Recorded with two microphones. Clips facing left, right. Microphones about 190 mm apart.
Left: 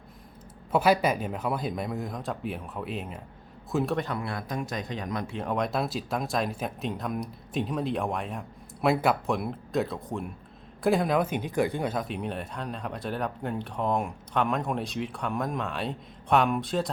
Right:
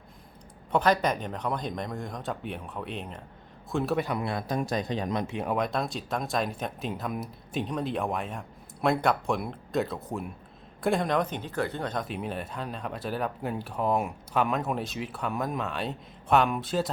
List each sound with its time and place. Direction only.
0.7 s speech: 5° left (ahead or behind); by 4.2 s 10° right (ahead or behind)
4.2 s speech: 25° right (ahead or behind)
4.5 s speech: 35° right (ahead or behind)
5.4 s speech: 5° right (ahead or behind)